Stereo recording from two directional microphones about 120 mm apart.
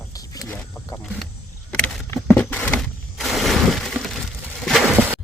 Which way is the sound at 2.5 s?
10° left (ahead or behind).